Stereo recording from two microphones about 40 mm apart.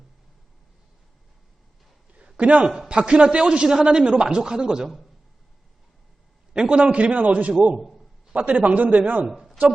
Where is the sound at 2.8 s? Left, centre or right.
Right.